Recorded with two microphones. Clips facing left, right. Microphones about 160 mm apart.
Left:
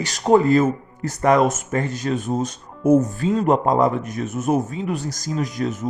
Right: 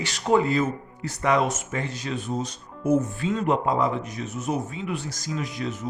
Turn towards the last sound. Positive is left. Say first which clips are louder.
# left 6 dB
turn(degrees=45)  # may be behind; listen again after turning